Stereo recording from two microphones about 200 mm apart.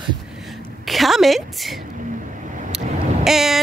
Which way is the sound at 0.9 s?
Centre (ahead or behind).